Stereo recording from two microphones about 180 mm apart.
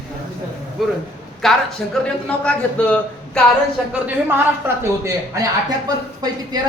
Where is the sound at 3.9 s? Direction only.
10° right (ahead or behind).